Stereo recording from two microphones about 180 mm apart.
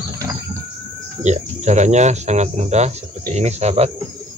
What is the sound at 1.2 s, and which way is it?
Speech, 40° right (ahead or behind).